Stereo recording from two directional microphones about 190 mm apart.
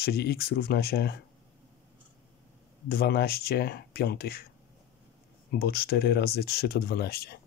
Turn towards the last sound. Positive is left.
turn(degrees=55)  # may be behind; listen again after turning